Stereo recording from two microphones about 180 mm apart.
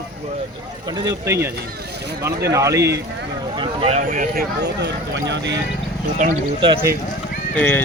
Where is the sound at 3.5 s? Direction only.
30° right (ahead or behind).